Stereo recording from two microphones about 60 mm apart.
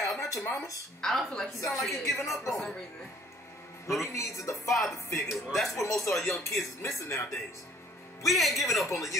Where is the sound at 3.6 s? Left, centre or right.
Left.